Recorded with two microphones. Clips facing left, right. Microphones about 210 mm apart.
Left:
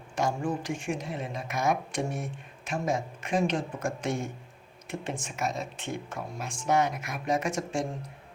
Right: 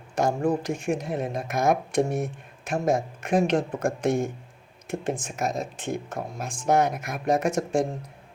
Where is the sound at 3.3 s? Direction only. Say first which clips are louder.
Right 5 dB; 65° right (ahead or behind).